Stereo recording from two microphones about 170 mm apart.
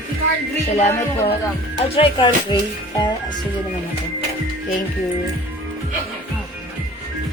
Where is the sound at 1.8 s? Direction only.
30° left (ahead or behind).